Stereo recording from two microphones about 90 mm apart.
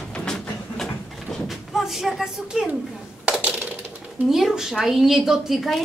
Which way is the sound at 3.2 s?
15° right (ahead or behind).